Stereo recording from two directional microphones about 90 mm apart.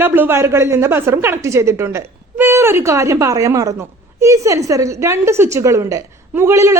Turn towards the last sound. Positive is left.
turn(degrees=-30)  # may be behind; listen again after turning